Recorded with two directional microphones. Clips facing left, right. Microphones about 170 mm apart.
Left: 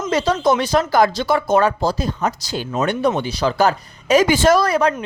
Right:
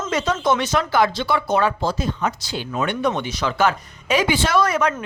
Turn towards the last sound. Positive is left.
turn(degrees=35)  # may be behind; listen again after turning